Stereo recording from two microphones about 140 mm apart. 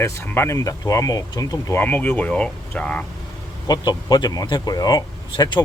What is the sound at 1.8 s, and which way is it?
Speech, 15° left (ahead or behind).